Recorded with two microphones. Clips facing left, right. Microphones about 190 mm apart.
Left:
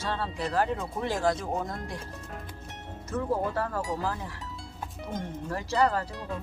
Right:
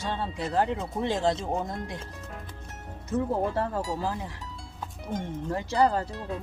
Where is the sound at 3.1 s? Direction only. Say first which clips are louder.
Right 2 dB; 25° right (ahead or behind).